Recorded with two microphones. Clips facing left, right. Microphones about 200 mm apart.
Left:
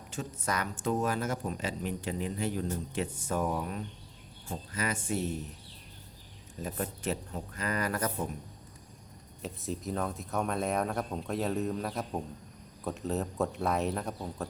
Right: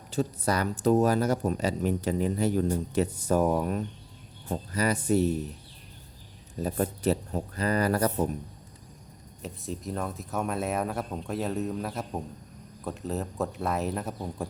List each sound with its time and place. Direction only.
0.1 s speech: 35° right (ahead or behind)
6.6 s speech: 40° right (ahead or behind)
9.4 s speech: centre (ahead or behind)